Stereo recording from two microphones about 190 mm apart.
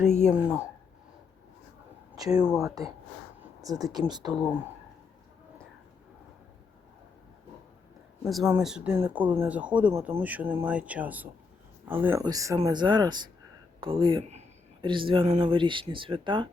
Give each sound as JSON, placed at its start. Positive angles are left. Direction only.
{"t": 0.1, "sound": "speech", "side_deg": 40}
{"t": 0.3, "sound": "speech", "side_deg": -5}
{"t": 2.1, "sound": "speech", "side_deg": -20}
{"t": 2.4, "sound": "speech", "side_deg": -5}
{"t": 3.6, "sound": "speech", "side_deg": -20}
{"t": 8.2, "sound": "speech", "side_deg": 0}